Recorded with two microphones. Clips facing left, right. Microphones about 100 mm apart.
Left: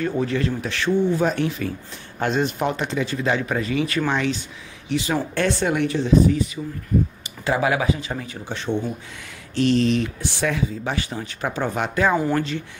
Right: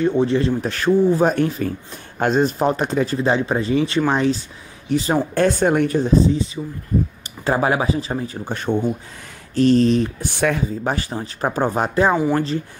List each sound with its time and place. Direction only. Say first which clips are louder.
0.0 s speech: right 5 dB; 25° right (ahead or behind)
0.7 s speech: right 4 dB; 40° right (ahead or behind)
3.2 s speech: right 4 dB; 30° right (ahead or behind); by 6.1 s 45° right (ahead or behind)
6.1 s speech: left 2 dB; 30° right (ahead or behind)
7.4 s speech: right 2 dB; 40° right (ahead or behind)
8.5 s speech: right 4 dB; 50° right (ahead or behind)